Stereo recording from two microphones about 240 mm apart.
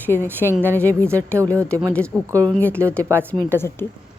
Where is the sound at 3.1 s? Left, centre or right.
Centre.